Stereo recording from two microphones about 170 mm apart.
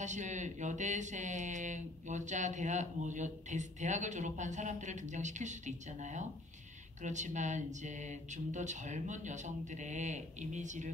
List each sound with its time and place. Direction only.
0.0 s speech: 45° right (ahead or behind)